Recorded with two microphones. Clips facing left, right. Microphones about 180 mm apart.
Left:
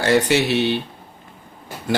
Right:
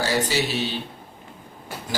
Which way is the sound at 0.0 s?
65° left (ahead or behind).